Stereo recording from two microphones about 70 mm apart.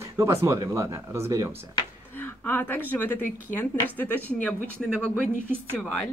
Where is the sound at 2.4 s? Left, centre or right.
Left.